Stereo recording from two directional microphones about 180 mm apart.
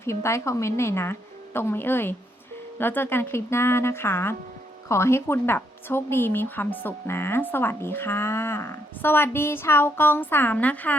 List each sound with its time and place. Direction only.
0.0 s speech: 15° left (ahead or behind)